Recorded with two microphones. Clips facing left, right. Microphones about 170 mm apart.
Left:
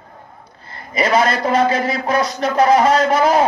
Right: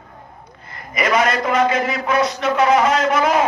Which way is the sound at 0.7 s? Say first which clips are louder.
Left 2 dB; 30° left (ahead or behind).